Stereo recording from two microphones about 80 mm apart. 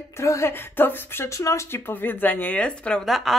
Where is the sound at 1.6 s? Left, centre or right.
Left; by 3.3 s centre.